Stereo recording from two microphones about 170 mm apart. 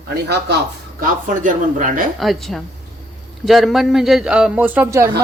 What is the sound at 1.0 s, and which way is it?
Speech, 50° right (ahead or behind).